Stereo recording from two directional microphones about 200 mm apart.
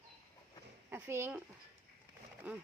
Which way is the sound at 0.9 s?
10° right (ahead or behind).